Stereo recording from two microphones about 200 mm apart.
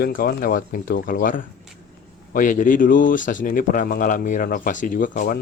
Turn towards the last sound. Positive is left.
turn(degrees=40)  # may be behind; listen again after turning